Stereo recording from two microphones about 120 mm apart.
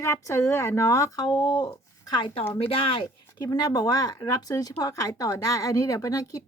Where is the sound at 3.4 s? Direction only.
30° left (ahead or behind).